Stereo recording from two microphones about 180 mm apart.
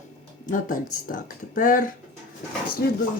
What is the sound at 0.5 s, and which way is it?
Speech, 50° left (ahead or behind).